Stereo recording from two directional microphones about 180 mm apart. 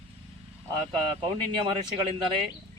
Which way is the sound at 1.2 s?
30° right (ahead or behind).